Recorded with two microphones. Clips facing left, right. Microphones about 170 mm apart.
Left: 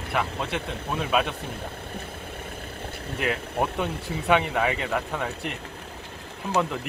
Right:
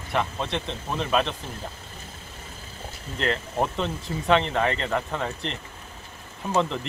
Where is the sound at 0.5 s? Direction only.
10° left (ahead or behind).